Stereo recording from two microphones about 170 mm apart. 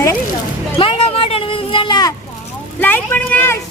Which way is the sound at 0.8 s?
30° left (ahead or behind).